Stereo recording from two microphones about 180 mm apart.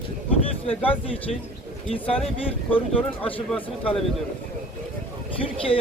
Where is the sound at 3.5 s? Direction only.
5° left (ahead or behind).